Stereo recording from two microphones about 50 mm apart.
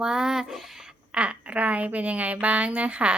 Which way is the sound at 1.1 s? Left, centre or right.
Right.